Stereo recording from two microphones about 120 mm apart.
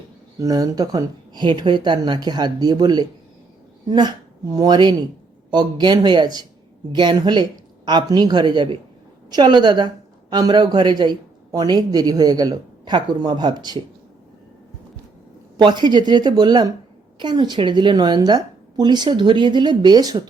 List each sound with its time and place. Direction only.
0.3 s a woman's voice: 30° right (ahead or behind)
15.5 s a woman's voice: 40° right (ahead or behind)